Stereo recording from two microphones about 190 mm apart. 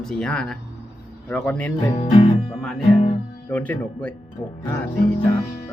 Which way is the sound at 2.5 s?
Centre (ahead or behind).